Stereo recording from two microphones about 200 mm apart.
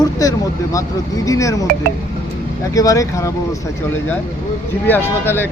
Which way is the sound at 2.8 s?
15° left (ahead or behind).